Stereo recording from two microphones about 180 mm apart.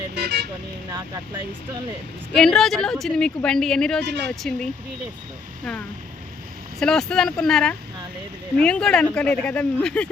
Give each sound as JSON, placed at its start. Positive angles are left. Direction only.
{"t": 0.1, "sound": "vehicle", "side_deg": -65}
{"t": 0.9, "sound": "speech", "side_deg": -20}
{"t": 2.3, "sound": "a woman's voice", "side_deg": 5}
{"t": 6.7, "sound": "a woman's voice", "side_deg": 5}